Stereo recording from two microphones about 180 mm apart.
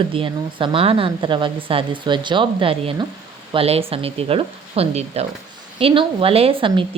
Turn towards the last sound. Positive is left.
turn(degrees=-30)  # may be behind; listen again after turning